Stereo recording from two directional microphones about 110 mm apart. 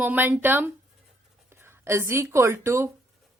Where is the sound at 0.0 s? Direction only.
15° right (ahead or behind).